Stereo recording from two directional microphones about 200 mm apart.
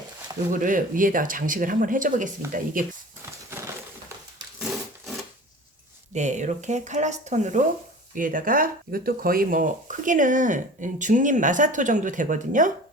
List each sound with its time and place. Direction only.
0.5 s speech: 40° right (ahead or behind)
4.6 s wood: centre (ahead or behind)
6.1 s speech: 35° right (ahead or behind)